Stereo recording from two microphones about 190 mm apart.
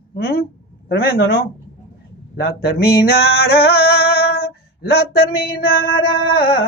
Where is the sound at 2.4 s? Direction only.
55° left (ahead or behind).